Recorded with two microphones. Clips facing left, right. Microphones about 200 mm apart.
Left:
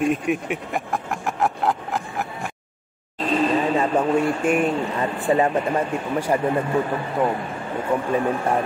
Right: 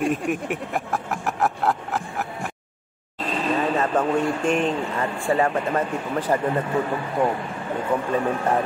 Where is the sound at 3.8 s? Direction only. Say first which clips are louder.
Left 2 dB; 10° left (ahead or behind).